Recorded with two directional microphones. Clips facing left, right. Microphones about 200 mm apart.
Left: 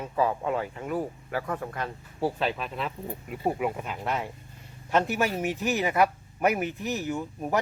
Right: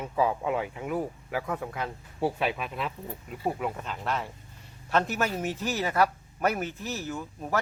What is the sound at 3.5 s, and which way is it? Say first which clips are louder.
Speech: left 3 dB; 10° left (ahead or behind).